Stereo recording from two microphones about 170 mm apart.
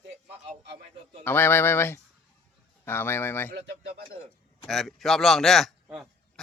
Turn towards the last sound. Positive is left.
turn(degrees=0)  # may be behind; listen again after turning